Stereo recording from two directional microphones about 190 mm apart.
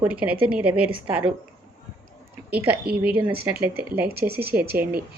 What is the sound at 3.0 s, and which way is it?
Speech, 10° right (ahead or behind).